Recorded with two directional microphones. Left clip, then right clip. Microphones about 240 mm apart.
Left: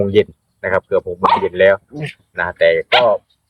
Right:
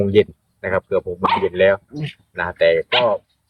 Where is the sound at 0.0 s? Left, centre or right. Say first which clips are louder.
Left 1 dB; centre.